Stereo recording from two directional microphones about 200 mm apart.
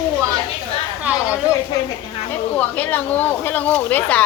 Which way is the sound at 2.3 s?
10° left (ahead or behind).